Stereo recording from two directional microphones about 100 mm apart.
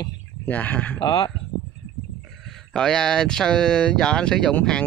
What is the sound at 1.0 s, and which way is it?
Speech, 55° left (ahead or behind).